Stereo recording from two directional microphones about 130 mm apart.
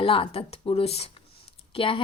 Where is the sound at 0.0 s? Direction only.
45° left (ahead or behind).